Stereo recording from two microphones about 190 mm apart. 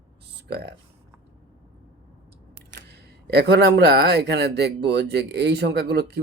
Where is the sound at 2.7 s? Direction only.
60° right (ahead or behind).